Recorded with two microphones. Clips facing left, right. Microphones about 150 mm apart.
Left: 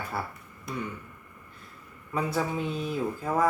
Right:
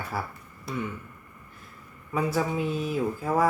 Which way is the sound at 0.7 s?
30° right (ahead or behind).